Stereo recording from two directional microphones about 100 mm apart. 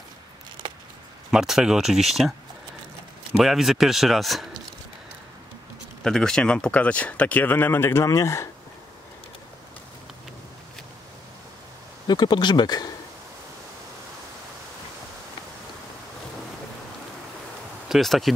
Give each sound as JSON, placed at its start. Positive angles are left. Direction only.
{"t": 1.3, "sound": "speech", "side_deg": -5}
{"t": 3.3, "sound": "speech", "side_deg": -5}
{"t": 6.0, "sound": "speech", "side_deg": 5}
{"t": 12.1, "sound": "speech", "side_deg": 45}
{"t": 17.8, "sound": "speech", "side_deg": 0}